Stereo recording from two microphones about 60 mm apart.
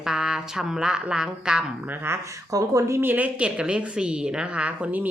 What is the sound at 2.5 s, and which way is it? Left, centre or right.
Speech, right.